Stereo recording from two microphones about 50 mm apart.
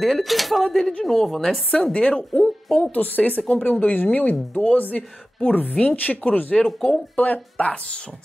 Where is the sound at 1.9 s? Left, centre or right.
Left.